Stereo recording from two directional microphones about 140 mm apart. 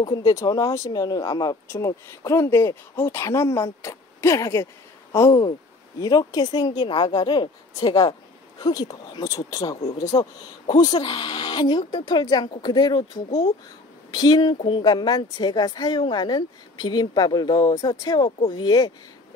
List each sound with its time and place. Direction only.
0.0 s a woman's voice: 30° left (ahead or behind)